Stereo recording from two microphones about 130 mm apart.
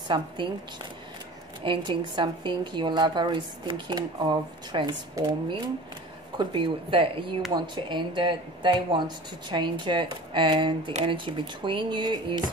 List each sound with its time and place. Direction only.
0.1 s speech: 35° right (ahead or behind)
1.6 s speech: 40° right (ahead or behind)
10.9 s speech: 55° right (ahead or behind)
11.1 s speech: 40° right (ahead or behind)